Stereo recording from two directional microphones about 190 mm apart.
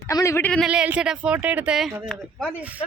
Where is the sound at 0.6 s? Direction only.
5° right (ahead or behind).